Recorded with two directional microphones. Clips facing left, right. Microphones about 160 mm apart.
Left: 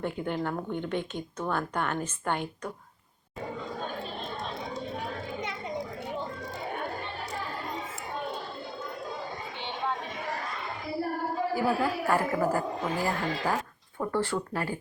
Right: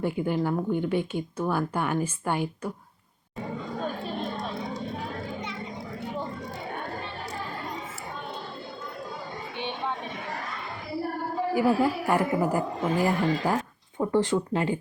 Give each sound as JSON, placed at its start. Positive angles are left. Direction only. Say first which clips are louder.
{"t": 0.0, "sound": "speech", "louder": "right 4 dB", "side_deg": -5}
{"t": 11.5, "sound": "speech", "louder": "right 6 dB", "side_deg": -15}